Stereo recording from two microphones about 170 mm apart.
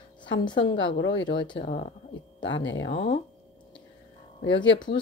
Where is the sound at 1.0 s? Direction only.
90° left.